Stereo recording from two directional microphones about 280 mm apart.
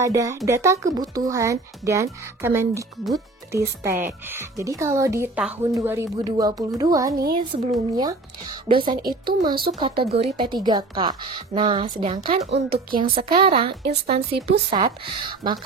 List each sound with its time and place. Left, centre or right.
0.0 s a woman's voice: centre
12.4 s a woman's voice: right
13.1 s a woman's voice: centre